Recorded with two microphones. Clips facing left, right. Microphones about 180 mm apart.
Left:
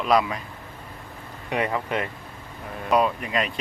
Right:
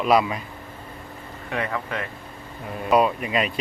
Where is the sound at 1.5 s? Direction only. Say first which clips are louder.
Left 3 dB; 15° left (ahead or behind).